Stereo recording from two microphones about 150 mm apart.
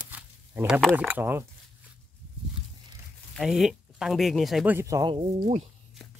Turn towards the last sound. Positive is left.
turn(degrees=-40)  # may be behind; listen again after turning